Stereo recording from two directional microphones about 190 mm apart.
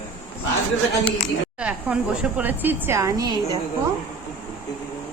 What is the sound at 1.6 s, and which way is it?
Speech, 5° right (ahead or behind).